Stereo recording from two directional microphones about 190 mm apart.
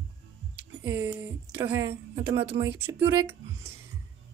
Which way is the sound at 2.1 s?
25° right (ahead or behind).